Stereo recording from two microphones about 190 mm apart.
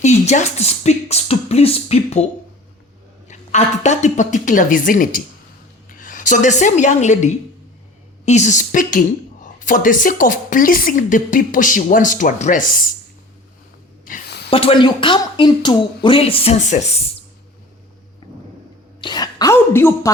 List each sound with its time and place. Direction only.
0.0 s beatboxing: 35° left (ahead or behind)
3.2 s a woman's voice: 40° left (ahead or behind)
14.0 s a sound: 55° left (ahead or behind)
14.5 s speech: 30° left (ahead or behind)
19.0 s a woman's voice: 20° left (ahead or behind)